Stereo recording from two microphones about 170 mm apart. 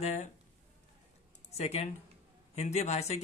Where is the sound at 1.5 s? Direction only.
40° left (ahead or behind).